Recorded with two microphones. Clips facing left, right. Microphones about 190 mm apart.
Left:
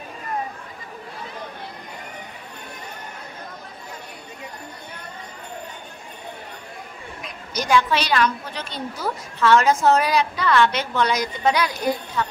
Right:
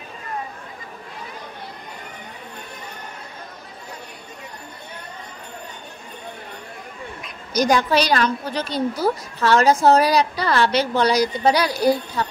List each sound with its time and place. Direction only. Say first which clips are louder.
7.5 s a woman's voice: right 3 dB; 40° right (ahead or behind)